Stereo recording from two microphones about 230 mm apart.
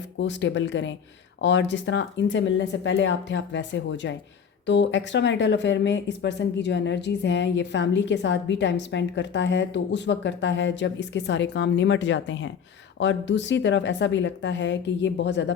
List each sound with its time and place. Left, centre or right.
0.2 s speech: left